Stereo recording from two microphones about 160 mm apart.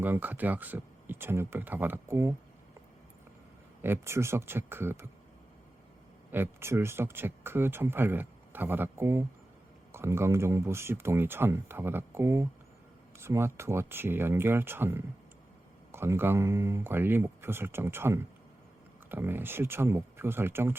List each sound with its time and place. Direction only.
0.0 s speech: 10° right (ahead or behind)
3.8 s speech: 15° right (ahead or behind)
6.3 s speech: 15° right (ahead or behind)